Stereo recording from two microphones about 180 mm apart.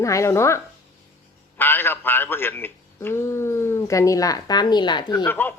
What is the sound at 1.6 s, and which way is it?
A man's voice, 10° left (ahead or behind).